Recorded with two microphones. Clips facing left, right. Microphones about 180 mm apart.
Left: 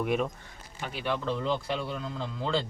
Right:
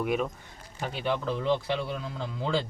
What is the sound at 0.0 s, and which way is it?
Speech, centre (ahead or behind).